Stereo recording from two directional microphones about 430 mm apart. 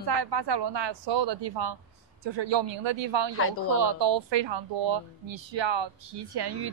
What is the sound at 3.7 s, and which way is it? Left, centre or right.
Speech, right.